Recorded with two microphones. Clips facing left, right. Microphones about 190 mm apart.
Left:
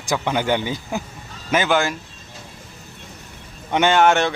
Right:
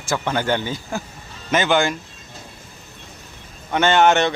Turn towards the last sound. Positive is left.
turn(degrees=5)  # may be behind; listen again after turning